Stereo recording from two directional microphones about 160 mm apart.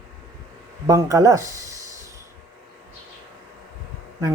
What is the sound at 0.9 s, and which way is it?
Speech, 20° right (ahead or behind).